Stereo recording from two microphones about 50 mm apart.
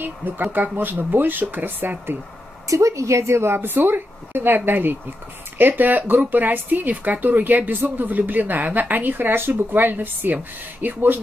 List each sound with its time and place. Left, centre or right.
0.0 s speech: right
2.7 s a woman's voice: right